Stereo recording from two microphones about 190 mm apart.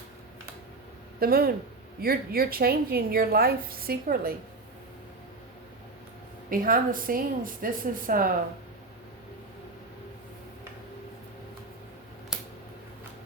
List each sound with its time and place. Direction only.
1.2 s a woman's voice: 50° right (ahead or behind)
6.5 s a woman's voice: 45° right (ahead or behind)